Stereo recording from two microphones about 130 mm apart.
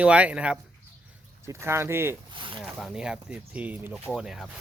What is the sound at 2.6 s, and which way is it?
Speech, centre (ahead or behind).